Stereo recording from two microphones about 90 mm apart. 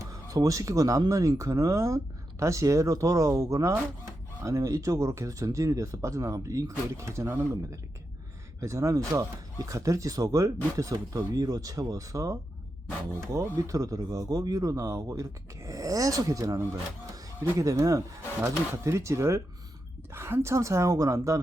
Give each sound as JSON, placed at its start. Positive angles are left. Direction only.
{"t": 0.0, "sound": "speech", "side_deg": -40}